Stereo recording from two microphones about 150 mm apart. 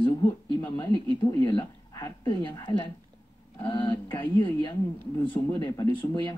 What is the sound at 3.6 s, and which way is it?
Speech, 30° left (ahead or behind).